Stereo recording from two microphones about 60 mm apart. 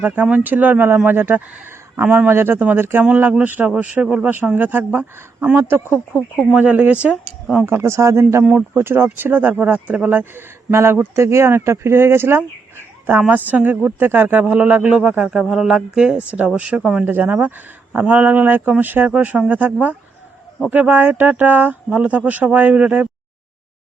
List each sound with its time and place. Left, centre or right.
0.0 s a man's voice: right
2.6 s speech: right
2.8 s a man's voice: right; by 4.3 s centre
4.5 s a man's voice: right
5.5 s speech: right
5.9 s speech: left
6.6 s speech: right
7.6 s a man's voice: right
10.7 s speech: right
12.4 s speech: right
15.2 s speech: centre
17.1 s a man's voice: right